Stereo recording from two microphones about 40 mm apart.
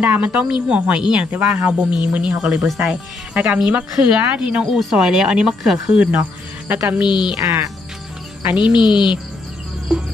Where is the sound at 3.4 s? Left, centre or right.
Centre.